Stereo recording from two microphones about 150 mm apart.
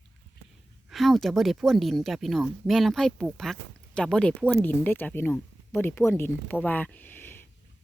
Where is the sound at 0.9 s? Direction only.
Centre (ahead or behind).